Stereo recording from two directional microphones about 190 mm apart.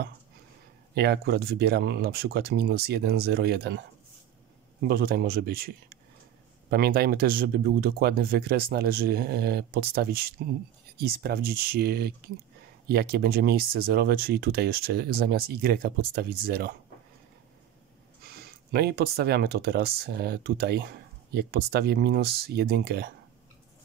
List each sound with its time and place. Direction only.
0.9 s speech: 60° right (ahead or behind)
4.8 s speech: 55° right (ahead or behind)
18.2 s speech: 55° right (ahead or behind)